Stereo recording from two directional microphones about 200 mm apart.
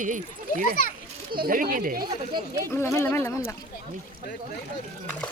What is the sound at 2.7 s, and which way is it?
Speech, 10° left (ahead or behind).